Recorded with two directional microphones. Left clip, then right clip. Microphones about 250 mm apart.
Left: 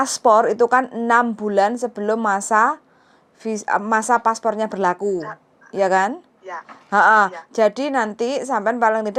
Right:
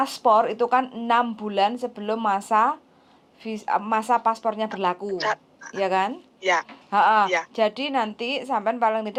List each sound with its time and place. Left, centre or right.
0.0 s speech: left